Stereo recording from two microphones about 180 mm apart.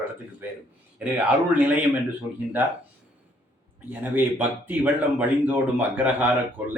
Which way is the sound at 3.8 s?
10° right (ahead or behind).